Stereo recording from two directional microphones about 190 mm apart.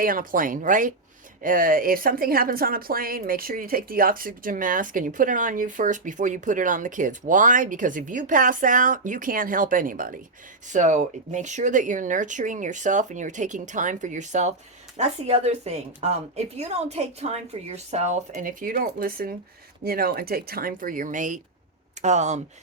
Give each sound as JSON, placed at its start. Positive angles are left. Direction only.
{"t": 0.0, "sound": "a woman's voice", "side_deg": -50}